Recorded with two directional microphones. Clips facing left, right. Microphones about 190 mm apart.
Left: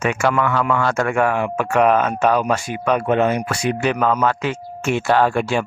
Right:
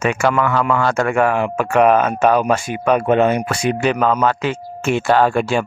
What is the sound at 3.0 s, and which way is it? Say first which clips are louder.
Speech: right 2 dB; 20° right (ahead or behind).